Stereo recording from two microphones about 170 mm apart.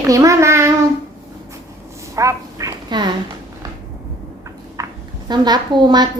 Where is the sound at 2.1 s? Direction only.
20° right (ahead or behind).